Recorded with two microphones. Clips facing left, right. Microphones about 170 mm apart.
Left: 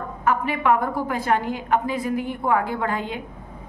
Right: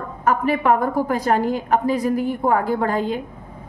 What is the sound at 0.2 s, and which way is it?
A woman's voice, 40° right (ahead or behind).